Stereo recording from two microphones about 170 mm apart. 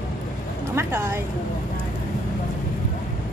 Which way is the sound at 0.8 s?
15° right (ahead or behind).